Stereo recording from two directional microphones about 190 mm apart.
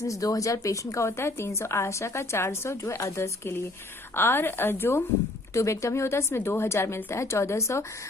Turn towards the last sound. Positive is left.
turn(degrees=15)  # may be behind; listen again after turning